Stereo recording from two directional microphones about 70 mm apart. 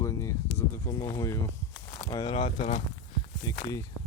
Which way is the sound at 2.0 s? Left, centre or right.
Left.